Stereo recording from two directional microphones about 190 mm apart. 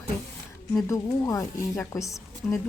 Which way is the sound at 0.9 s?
15° left (ahead or behind).